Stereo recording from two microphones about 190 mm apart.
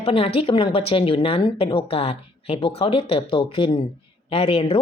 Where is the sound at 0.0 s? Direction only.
30° left (ahead or behind).